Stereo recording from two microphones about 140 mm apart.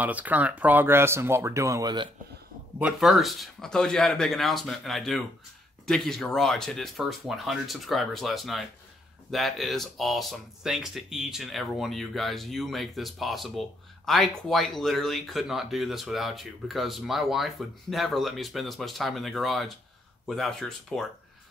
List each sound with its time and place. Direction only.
0.0 s speech: 10° right (ahead or behind); by 2.0 s 25° right (ahead or behind)
2.8 s speech: 5° right (ahead or behind)